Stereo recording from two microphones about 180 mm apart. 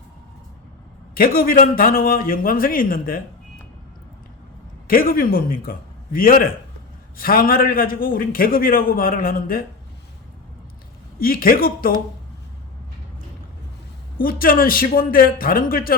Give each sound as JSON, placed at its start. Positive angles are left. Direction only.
{"t": 1.1, "sound": "a man's voice", "side_deg": 55}
{"t": 4.9, "sound": "a man's voice", "side_deg": 55}
{"t": 11.2, "sound": "a man's voice", "side_deg": 55}
{"t": 14.2, "sound": "a man's voice", "side_deg": 55}